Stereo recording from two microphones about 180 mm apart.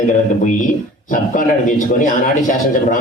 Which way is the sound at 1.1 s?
45° left (ahead or behind).